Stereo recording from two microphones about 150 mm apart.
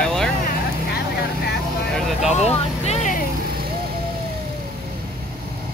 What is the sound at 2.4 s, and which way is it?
Vehicle, 45° left (ahead or behind).